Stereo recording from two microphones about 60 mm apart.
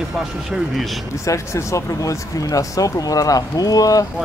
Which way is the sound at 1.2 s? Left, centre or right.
Left.